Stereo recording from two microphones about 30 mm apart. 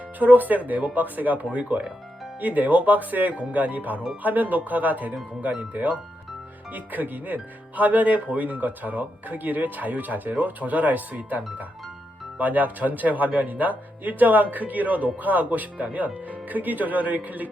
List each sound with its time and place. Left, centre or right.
0.2 s speech: right
1.5 s speech: right
2.4 s speech: right
6.7 s speech: right
7.3 s speech: right
11.3 s speech: right